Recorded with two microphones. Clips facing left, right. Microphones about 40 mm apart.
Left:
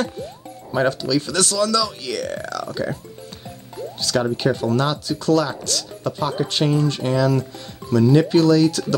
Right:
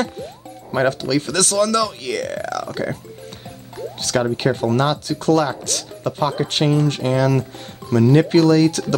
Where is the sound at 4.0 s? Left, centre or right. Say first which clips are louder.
Right 1 dB; right.